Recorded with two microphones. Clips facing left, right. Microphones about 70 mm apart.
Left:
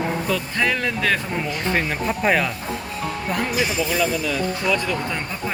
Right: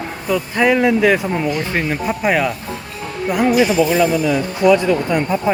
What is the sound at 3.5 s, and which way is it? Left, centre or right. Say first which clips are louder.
Speech: right 8 dB; right.